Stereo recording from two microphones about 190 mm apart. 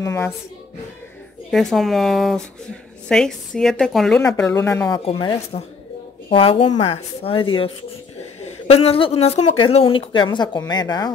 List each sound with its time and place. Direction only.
0.0 s speech: 15° left (ahead or behind)
1.5 s a woman's voice: centre (ahead or behind)
4.5 s speech: 15° left (ahead or behind)
5.0 s a woman's voice: 25° left (ahead or behind)